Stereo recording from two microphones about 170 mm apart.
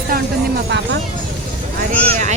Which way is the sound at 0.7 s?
90° right.